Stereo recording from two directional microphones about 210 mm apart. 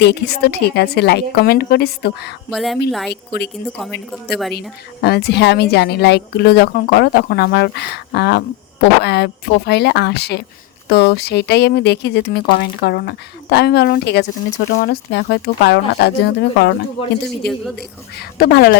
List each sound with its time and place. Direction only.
0.0 s a woman's voice: 50° left (ahead or behind)
2.5 s a woman's voice: centre (ahead or behind)
3.1 s a woman's voice: 50° left (ahead or behind)
4.1 s a woman's voice: centre (ahead or behind)
4.9 s a woman's voice: 50° left (ahead or behind)
17.4 s a woman's voice: centre (ahead or behind)
17.7 s a woman's voice: 50° left (ahead or behind)